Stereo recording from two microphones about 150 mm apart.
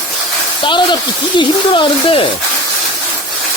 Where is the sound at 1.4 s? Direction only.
35° left (ahead or behind).